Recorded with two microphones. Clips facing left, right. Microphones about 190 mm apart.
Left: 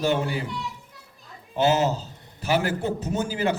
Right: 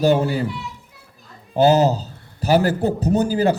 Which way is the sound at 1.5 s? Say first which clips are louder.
Right 6 dB; 35° right (ahead or behind).